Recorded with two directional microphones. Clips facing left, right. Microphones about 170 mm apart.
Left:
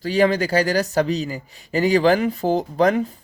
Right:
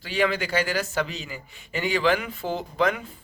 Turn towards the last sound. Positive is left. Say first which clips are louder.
# left 7 dB
turn(degrees=40)  # may be behind; listen again after turning